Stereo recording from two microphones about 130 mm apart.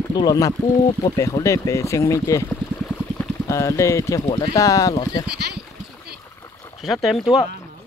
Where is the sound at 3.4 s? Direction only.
25° left (ahead or behind).